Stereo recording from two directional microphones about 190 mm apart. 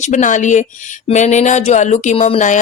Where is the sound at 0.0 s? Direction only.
40° left (ahead or behind).